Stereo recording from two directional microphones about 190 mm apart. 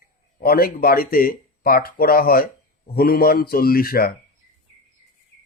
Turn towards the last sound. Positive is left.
turn(degrees=50)  # may be behind; listen again after turning